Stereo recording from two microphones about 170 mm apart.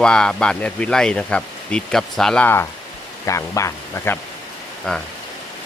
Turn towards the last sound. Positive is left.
turn(degrees=5)  # may be behind; listen again after turning